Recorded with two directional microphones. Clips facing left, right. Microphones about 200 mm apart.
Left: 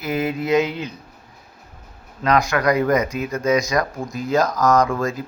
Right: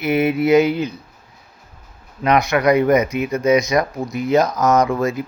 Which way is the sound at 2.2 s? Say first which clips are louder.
Right 3 dB; 20° right (ahead or behind).